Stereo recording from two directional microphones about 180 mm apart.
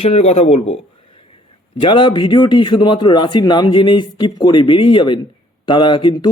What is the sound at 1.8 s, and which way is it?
Speech, 25° left (ahead or behind).